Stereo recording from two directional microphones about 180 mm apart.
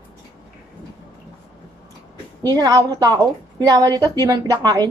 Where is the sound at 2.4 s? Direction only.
20° right (ahead or behind).